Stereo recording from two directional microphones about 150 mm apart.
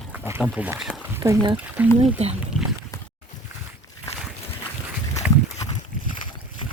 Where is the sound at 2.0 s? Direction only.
45° right (ahead or behind).